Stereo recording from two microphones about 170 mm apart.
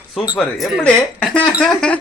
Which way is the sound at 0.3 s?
5° left (ahead or behind).